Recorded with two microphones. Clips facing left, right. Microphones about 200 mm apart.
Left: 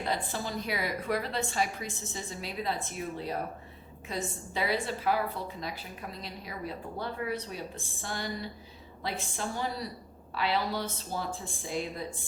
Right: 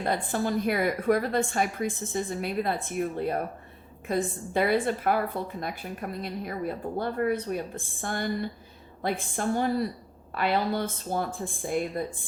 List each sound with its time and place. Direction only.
0.0 s a woman's voice: 50° right (ahead or behind)